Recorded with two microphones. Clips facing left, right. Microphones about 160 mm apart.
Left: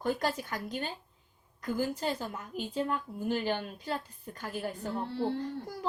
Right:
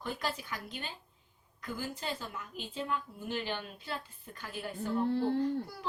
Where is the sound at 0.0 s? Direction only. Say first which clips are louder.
Left 6 dB; 45° left (ahead or behind).